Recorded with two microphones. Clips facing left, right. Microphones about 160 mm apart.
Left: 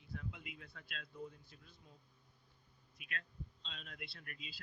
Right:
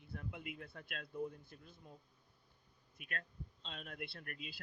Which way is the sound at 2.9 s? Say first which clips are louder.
Right 1 dB; 50° right (ahead or behind).